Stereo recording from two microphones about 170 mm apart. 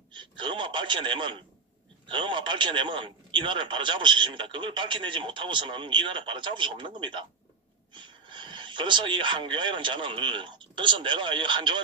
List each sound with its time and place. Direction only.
0.1 s a man's voice: 30° right (ahead or behind)